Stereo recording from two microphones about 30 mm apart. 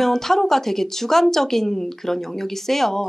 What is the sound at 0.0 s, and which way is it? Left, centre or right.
Speech, centre.